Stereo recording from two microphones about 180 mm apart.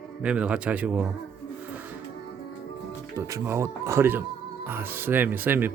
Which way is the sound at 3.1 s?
15° right (ahead or behind).